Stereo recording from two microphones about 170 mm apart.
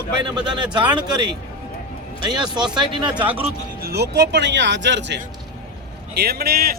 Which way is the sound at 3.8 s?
70° right (ahead or behind).